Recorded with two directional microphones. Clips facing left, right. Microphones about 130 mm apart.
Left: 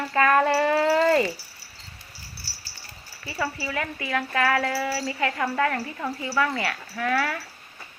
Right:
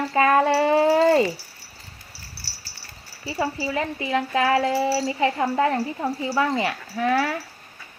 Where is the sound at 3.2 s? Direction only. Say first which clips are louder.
Right 4 dB; 25° right (ahead or behind).